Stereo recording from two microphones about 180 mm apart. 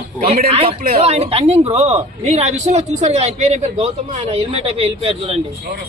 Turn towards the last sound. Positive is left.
turn(degrees=-30)  # may be behind; listen again after turning